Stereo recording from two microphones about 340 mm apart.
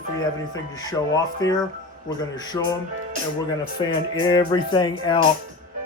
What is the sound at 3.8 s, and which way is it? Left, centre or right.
Speech, centre.